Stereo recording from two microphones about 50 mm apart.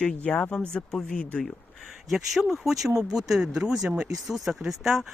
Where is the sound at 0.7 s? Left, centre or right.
Centre.